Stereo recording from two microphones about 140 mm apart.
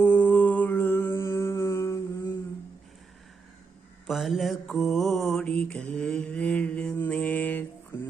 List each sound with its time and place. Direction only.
0.0 s mantra: 10° left (ahead or behind)
4.0 s mantra: centre (ahead or behind)